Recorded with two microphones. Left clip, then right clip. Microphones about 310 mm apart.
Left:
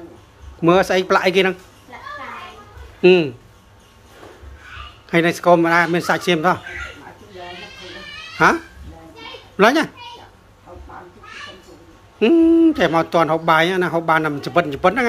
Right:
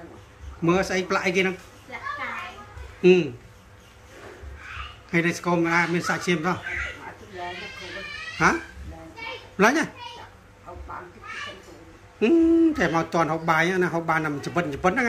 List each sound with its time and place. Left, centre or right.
0.6 s speech: centre
3.0 s speech: centre
5.1 s speech: centre
8.4 s speech: centre
9.6 s a child's voice: centre
12.2 s speech: centre